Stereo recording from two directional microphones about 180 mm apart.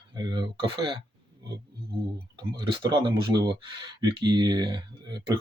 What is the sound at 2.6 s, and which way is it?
Speech, 30° right (ahead or behind).